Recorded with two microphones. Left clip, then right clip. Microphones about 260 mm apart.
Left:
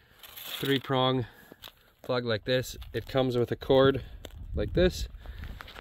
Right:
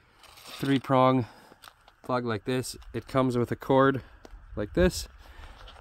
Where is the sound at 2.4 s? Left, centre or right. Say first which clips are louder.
Left 3 dB; centre.